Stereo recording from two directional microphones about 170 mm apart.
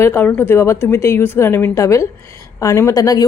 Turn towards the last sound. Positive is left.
turn(degrees=20)  # may be behind; listen again after turning